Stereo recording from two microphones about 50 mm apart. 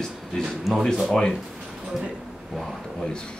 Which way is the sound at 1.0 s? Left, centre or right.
Centre.